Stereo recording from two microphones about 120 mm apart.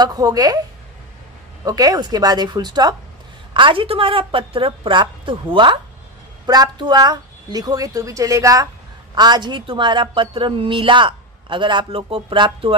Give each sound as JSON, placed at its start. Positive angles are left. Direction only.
{"t": 0.0, "sound": "a woman's voice", "side_deg": -35}
{"t": 1.6, "sound": "a woman's voice", "side_deg": -30}